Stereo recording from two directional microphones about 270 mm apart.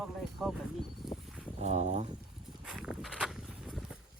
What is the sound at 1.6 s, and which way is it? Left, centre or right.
Speech, right.